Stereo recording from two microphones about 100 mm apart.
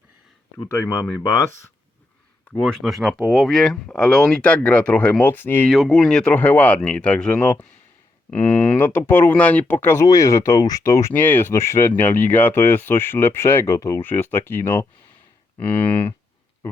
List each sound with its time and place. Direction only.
0.6 s speech: 30° left (ahead or behind)
2.6 s speech: 5° left (ahead or behind); by 5.6 s 20° left (ahead or behind)
5.9 s speech: 5° left (ahead or behind)
10.0 s speech: 35° left (ahead or behind)
11.1 s speech: 20° left (ahead or behind)
14.0 s speech: 20° left (ahead or behind)